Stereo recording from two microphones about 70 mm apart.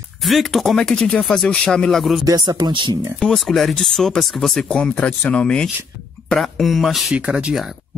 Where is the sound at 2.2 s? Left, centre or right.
Right.